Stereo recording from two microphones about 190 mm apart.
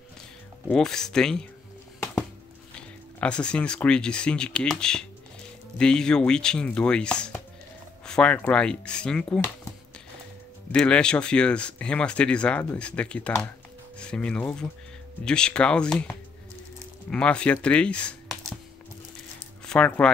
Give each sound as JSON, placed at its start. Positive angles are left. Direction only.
{"t": 0.7, "sound": "speech", "side_deg": 5}
{"t": 3.2, "sound": "speech", "side_deg": 5}
{"t": 19.6, "sound": "speech", "side_deg": 5}